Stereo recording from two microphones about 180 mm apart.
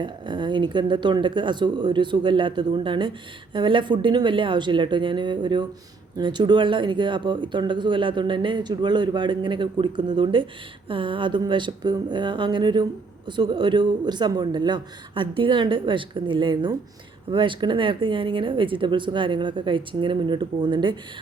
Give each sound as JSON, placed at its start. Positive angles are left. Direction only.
{"t": 0.0, "sound": "speech", "side_deg": -25}